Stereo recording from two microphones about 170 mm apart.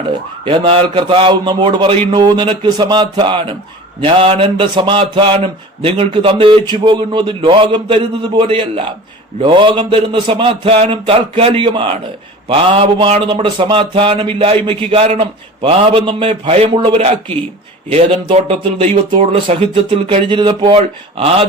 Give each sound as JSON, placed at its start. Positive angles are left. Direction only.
{"t": 0.4, "sound": "a man's voice", "side_deg": -30}